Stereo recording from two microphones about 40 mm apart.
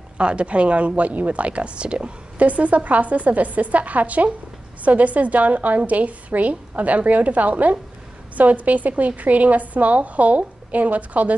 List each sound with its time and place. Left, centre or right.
0.2 s a woman's voice: right
2.4 s a woman's voice: right